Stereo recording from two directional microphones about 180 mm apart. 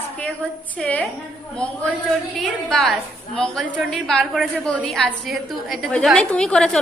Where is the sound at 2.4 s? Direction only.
Centre (ahead or behind).